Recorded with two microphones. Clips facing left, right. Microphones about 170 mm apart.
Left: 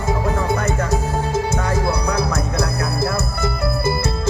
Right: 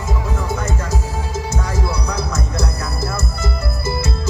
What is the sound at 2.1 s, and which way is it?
Music, 60° left (ahead or behind).